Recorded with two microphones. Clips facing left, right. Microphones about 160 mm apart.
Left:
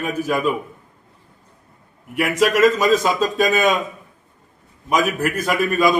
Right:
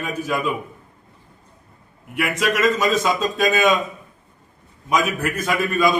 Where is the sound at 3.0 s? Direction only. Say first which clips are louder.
Left 2 dB; 40° left (ahead or behind).